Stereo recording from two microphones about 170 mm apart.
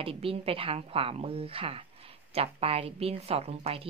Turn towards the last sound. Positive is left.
turn(degrees=-35)  # may be behind; listen again after turning